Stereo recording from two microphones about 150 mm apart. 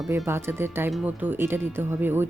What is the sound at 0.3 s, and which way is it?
Speech, 15° right (ahead or behind).